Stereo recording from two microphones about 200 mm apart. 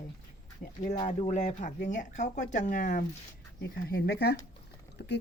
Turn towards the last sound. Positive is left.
turn(degrees=55)  # may be behind; listen again after turning